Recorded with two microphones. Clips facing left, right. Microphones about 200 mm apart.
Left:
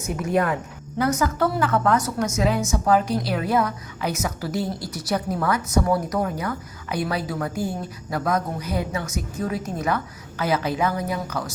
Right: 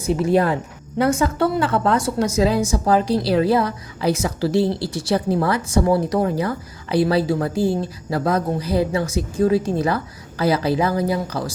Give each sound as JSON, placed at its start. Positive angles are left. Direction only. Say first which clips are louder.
{"t": 0.0, "sound": "a woman's voice", "louder": "right 5 dB", "side_deg": -30}